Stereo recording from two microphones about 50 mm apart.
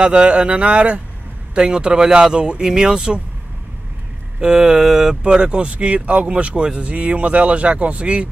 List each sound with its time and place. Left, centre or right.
0.0 s speech: right
4.4 s speech: centre